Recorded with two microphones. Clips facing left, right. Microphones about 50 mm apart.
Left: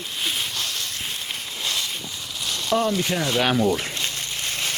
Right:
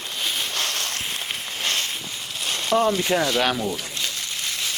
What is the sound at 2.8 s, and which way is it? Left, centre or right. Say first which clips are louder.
Speech: right 3 dB; right.